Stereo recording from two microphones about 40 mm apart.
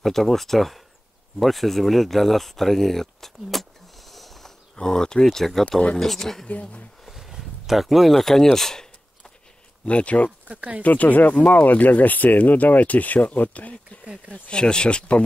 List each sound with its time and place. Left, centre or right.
0.0 s speech: centre
4.7 s speech: centre
6.4 s speech: left
7.1 s a sound: centre
8.5 s speech: centre
9.8 s speech: left
10.5 s speech: right
10.8 s speech: left
14.3 s speech: left